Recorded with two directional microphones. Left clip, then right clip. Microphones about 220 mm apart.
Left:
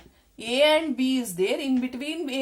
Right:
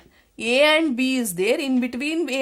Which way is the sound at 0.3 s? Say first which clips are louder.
Right 3 dB; 50° right (ahead or behind).